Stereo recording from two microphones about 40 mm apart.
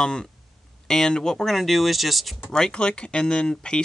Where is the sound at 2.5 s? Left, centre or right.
Left.